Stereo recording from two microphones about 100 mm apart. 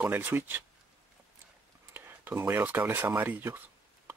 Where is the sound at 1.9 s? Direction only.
20° right (ahead or behind).